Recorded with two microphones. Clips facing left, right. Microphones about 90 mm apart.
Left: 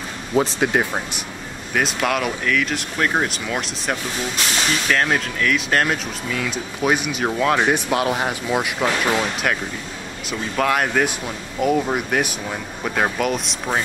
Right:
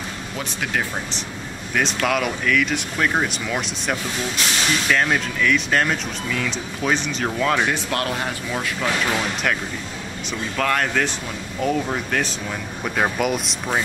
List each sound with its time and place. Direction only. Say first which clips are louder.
0.4 s speech: left 7 dB; 25° left (ahead or behind)
1.7 s speech: even; 5° left (ahead or behind)
9.1 s speech: left 2 dB; 5° left (ahead or behind)